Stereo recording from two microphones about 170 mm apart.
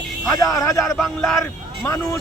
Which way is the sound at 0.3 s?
20° left (ahead or behind).